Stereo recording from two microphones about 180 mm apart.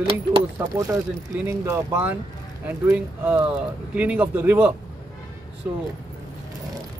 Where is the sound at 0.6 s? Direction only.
15° right (ahead or behind).